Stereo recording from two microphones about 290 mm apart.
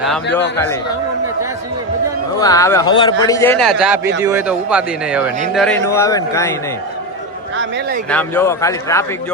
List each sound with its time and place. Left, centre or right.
0.3 s speech: centre
2.4 s speech: centre
7.5 s a sound: right
8.1 s speech: centre